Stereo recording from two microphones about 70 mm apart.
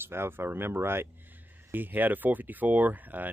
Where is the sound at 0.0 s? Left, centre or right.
Right.